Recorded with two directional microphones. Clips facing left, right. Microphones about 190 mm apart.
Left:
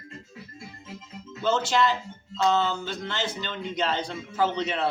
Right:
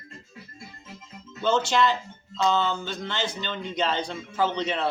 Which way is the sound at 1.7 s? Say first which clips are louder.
Right 1 dB; 5° left (ahead or behind).